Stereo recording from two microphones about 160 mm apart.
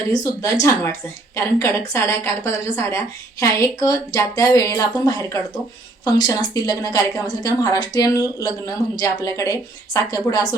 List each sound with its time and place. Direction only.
0.1 s a woman's voice: 20° left (ahead or behind)